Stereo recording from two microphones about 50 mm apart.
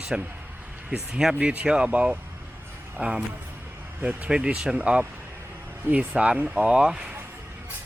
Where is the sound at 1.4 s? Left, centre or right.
Right.